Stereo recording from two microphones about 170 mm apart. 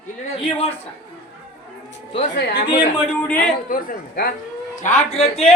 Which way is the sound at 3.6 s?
55° left (ahead or behind).